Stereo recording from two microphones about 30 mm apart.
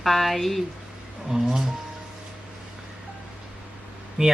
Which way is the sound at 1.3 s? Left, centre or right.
Centre.